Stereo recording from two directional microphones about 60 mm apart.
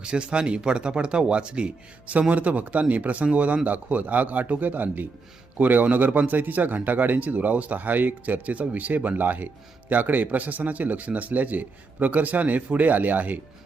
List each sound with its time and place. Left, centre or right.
0.0 s a man's voice: centre